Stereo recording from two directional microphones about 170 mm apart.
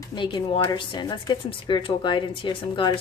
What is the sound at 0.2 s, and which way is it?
A woman's voice, 30° left (ahead or behind).